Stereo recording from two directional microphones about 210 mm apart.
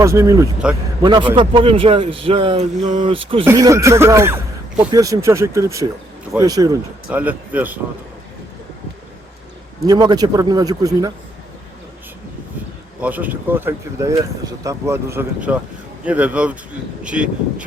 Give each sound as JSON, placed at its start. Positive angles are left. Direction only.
{"t": 0.0, "sound": "speech", "side_deg": -15}
{"t": 1.0, "sound": "speech", "side_deg": -20}
{"t": 3.4, "sound": "speech", "side_deg": -15}
{"t": 7.1, "sound": "speech", "side_deg": -5}
{"t": 9.8, "sound": "speech", "side_deg": -20}
{"t": 13.0, "sound": "speech", "side_deg": -5}